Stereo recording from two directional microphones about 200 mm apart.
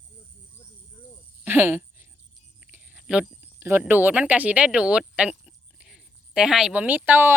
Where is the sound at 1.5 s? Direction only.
10° right (ahead or behind).